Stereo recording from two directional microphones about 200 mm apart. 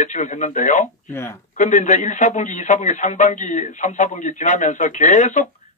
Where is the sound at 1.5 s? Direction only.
35° left (ahead or behind).